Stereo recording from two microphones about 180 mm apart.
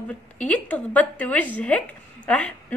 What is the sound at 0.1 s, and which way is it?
A woman's voice, 5° left (ahead or behind).